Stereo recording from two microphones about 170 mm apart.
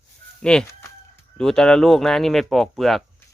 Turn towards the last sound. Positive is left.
turn(degrees=0)  # may be behind; listen again after turning